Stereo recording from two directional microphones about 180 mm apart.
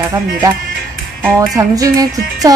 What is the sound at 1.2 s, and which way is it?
Speech, 20° right (ahead or behind).